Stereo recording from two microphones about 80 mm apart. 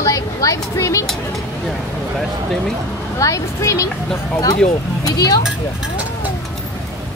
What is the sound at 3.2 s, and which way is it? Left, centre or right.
Speech, left.